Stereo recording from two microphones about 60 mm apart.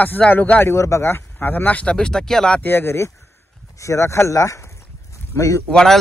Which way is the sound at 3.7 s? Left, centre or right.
Left.